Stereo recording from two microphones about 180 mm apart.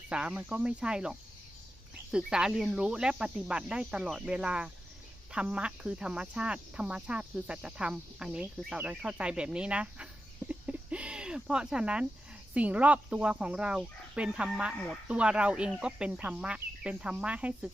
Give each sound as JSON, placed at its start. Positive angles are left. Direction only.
{"t": 0.1, "sound": "speech", "side_deg": -5}
{"t": 2.1, "sound": "speech", "side_deg": -5}
{"t": 10.5, "sound": "a sound", "side_deg": -5}
{"t": 12.5, "sound": "speech", "side_deg": -5}